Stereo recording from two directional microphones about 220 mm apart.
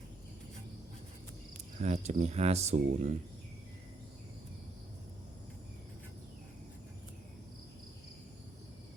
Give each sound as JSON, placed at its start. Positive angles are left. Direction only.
{"t": 1.8, "sound": "speech", "side_deg": -30}